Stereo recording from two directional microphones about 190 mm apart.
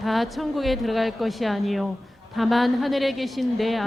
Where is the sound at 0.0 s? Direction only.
Centre (ahead or behind).